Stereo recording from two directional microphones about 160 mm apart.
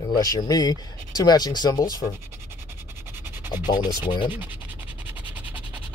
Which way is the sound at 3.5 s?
25° left (ahead or behind).